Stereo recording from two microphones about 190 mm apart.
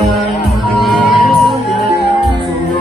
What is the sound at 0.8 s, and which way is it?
Music, centre (ahead or behind).